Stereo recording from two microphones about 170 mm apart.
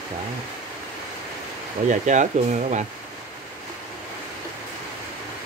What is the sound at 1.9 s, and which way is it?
Speech, 45° right (ahead or behind).